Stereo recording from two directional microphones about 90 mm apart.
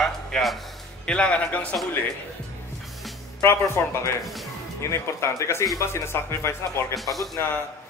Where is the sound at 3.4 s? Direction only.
30° left (ahead or behind).